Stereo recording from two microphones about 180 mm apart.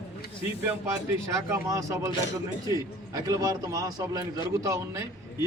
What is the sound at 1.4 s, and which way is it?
Speech, 15° right (ahead or behind).